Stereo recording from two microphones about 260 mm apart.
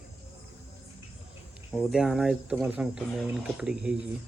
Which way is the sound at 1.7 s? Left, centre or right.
Centre.